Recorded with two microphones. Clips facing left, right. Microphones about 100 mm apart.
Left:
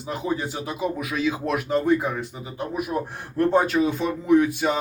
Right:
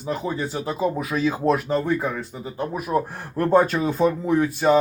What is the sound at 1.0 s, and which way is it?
Speech, 35° right (ahead or behind).